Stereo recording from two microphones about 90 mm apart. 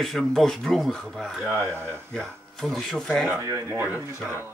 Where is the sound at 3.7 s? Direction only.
20° right (ahead or behind).